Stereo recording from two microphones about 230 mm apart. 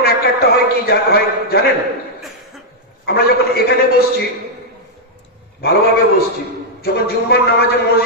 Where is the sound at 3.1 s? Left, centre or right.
Left.